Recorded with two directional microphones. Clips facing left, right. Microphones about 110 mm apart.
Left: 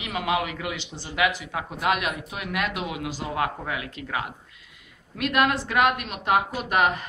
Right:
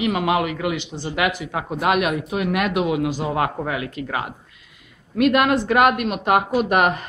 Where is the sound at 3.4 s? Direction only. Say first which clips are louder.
Right 5 dB; 40° right (ahead or behind).